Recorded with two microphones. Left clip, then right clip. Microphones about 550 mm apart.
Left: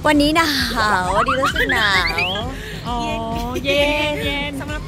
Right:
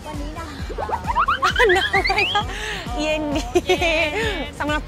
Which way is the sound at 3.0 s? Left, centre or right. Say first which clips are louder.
Right 5 dB; right.